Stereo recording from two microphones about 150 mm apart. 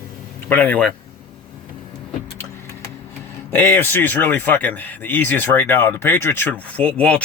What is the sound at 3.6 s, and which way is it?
Speech, 15° left (ahead or behind).